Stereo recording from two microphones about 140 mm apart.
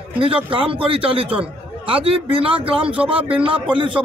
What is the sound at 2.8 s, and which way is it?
Speech, 10° right (ahead or behind).